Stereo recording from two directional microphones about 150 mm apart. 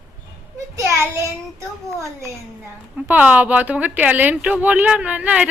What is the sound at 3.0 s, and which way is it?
A woman's voice, 10° right (ahead or behind).